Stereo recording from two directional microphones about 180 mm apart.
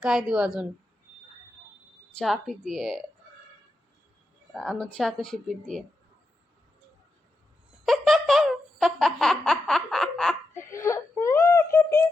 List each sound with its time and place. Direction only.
0.0 s speech: 5° right (ahead or behind)
2.1 s speech: centre (ahead or behind)
4.5 s speech: centre (ahead or behind)
7.9 s a sound: centre (ahead or behind)
10.5 s wail: 15° left (ahead or behind)